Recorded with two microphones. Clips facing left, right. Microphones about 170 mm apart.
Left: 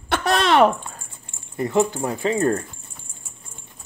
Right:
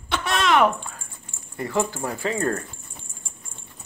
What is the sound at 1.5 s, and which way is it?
Speech, 20° left (ahead or behind).